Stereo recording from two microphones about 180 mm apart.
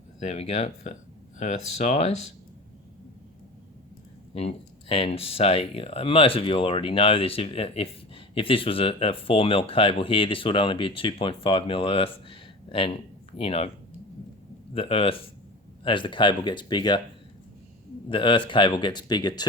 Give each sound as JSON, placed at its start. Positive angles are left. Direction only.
{"t": 0.2, "sound": "speech", "side_deg": 35}
{"t": 4.4, "sound": "speech", "side_deg": 35}
{"t": 14.7, "sound": "speech", "side_deg": 30}
{"t": 18.1, "sound": "speech", "side_deg": 25}